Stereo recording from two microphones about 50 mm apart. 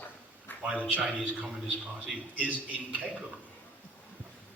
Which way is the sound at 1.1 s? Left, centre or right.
Right.